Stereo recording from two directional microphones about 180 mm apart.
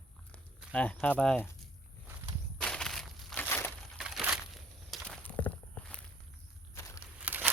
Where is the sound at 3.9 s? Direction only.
5° right (ahead or behind).